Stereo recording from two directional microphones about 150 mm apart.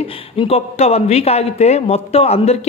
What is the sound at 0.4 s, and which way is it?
Speech, 45° left (ahead or behind).